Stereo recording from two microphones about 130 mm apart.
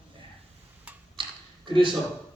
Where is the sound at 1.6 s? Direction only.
40° right (ahead or behind).